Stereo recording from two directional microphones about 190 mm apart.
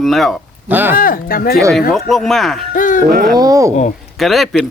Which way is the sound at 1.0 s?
50° left (ahead or behind).